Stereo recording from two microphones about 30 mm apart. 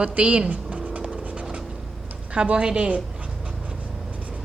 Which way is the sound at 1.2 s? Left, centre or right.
Right.